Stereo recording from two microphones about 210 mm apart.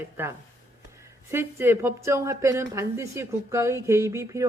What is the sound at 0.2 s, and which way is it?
Speech, 10° right (ahead or behind).